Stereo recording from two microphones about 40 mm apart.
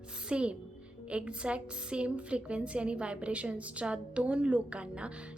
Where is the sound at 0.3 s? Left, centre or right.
Right.